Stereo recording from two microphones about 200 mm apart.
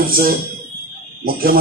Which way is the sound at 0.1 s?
45° right (ahead or behind).